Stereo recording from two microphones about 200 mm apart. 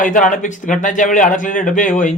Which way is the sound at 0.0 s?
40° left (ahead or behind).